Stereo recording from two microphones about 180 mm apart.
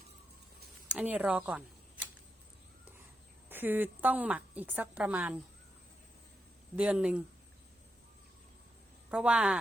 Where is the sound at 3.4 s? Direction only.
10° right (ahead or behind).